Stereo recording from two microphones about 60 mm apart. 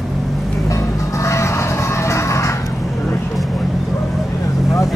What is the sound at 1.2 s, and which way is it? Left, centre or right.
Music, left.